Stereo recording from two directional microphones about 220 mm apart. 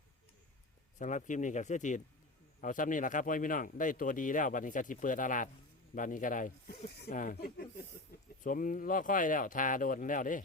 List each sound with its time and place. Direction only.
0.9 s speech: 35° left (ahead or behind)